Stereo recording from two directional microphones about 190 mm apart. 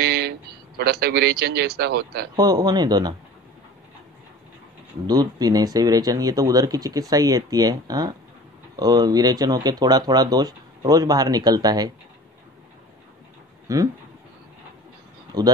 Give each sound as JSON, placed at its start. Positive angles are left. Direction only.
{"t": 0.0, "sound": "a sound", "side_deg": -60}
{"t": 0.7, "sound": "a man's voice", "side_deg": -55}
{"t": 2.3, "sound": "speech", "side_deg": -20}
{"t": 5.0, "sound": "speech", "side_deg": -20}
{"t": 13.7, "sound": "speech", "side_deg": -15}
{"t": 15.3, "sound": "speech", "side_deg": -20}